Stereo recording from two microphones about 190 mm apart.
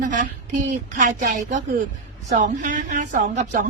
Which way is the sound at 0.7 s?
40° right (ahead or behind).